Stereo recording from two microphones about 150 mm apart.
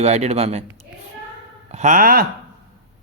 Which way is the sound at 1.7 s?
55° right (ahead or behind).